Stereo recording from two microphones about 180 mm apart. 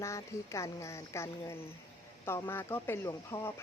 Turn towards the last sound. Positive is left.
turn(degrees=15)  # may be behind; listen again after turning